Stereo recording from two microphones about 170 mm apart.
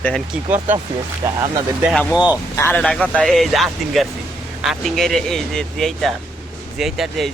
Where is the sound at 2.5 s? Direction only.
10° left (ahead or behind).